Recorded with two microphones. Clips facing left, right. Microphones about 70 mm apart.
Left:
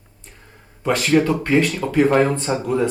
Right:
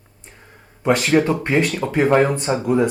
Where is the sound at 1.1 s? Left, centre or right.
Right.